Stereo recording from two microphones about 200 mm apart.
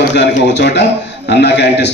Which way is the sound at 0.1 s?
60° left (ahead or behind).